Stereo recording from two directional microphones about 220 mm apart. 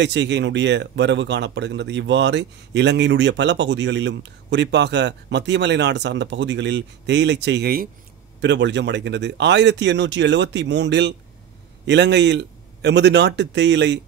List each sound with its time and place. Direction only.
0.0 s speech: 50° right (ahead or behind)